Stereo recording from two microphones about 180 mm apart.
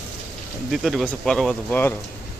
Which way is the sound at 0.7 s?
Centre (ahead or behind).